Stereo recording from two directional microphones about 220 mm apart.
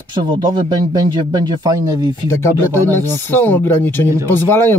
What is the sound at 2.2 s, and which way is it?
Speech, 10° left (ahead or behind).